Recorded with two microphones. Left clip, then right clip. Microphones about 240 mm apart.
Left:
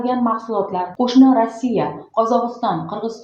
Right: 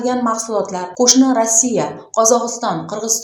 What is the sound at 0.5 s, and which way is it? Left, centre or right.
A woman's voice, right.